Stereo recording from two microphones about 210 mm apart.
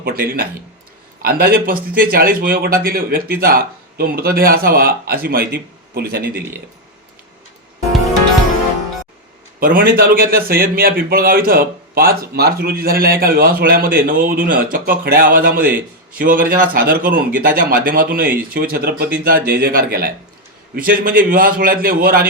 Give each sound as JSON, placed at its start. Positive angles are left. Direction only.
{"t": 0.0, "sound": "a man's voice", "side_deg": -45}
{"t": 9.6, "sound": "a man's voice", "side_deg": -40}